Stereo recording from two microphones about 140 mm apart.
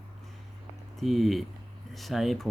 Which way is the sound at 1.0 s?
Centre (ahead or behind).